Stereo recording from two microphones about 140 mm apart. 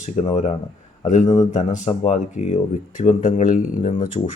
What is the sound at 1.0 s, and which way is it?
Speech, 60° left (ahead or behind).